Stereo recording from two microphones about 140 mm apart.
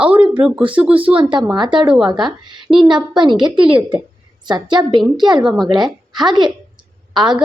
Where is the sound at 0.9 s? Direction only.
40° right (ahead or behind).